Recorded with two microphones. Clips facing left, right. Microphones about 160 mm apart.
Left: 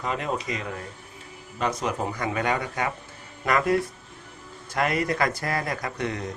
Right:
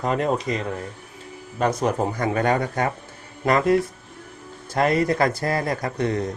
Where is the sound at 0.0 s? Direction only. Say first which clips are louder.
Right 6 dB; 40° right (ahead or behind).